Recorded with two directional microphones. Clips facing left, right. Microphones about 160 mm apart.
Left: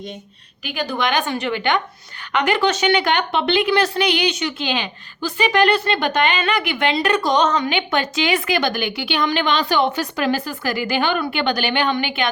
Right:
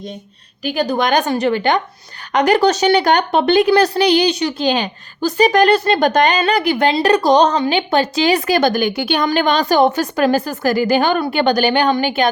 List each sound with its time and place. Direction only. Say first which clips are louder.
0.6 s a woman's voice: right 6 dB; 40° right (ahead or behind)